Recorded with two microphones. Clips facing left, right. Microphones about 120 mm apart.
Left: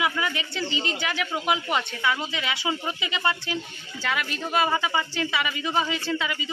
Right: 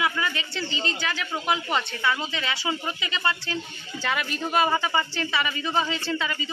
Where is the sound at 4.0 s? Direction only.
Centre (ahead or behind).